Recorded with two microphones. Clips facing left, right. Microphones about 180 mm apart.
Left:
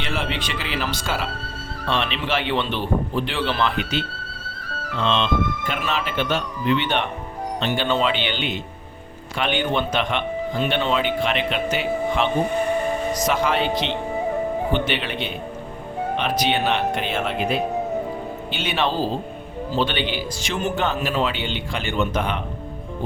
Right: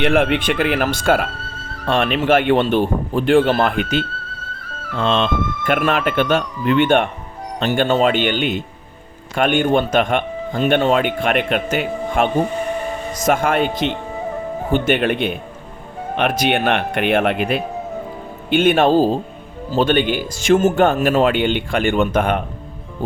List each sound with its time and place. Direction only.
0.0 s speech: 55° right (ahead or behind)